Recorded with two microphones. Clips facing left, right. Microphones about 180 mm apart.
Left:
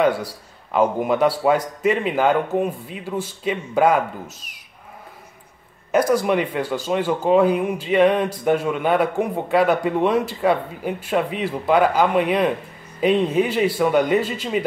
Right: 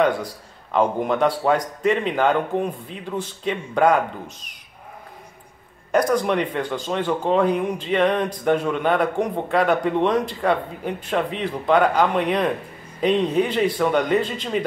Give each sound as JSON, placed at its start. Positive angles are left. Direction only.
{"t": 0.0, "sound": "a man's voice", "side_deg": 5}
{"t": 5.9, "sound": "a man's voice", "side_deg": 5}